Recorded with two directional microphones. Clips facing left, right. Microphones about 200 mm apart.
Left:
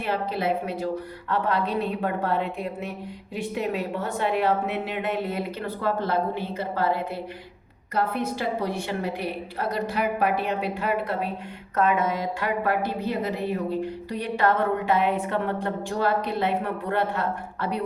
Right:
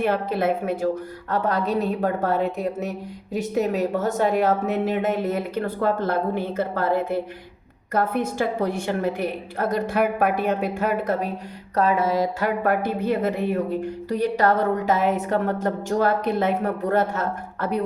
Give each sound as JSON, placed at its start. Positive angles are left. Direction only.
{"t": 0.0, "sound": "a woman's voice", "side_deg": -50}